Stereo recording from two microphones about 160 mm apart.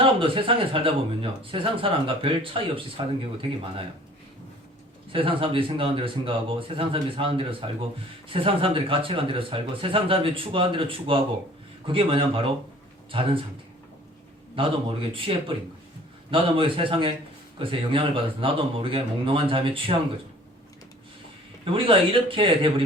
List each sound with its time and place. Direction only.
0.0 s speech: 35° right (ahead or behind)
5.1 s speech: 35° right (ahead or behind)
14.5 s speech: 35° right (ahead or behind)
21.6 s speech: 35° right (ahead or behind)